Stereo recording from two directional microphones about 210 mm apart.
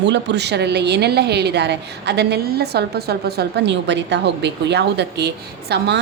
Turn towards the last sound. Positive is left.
turn(degrees=-50)  # may be behind; listen again after turning